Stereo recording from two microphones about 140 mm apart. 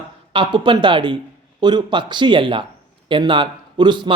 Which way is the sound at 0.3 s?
35° right (ahead or behind).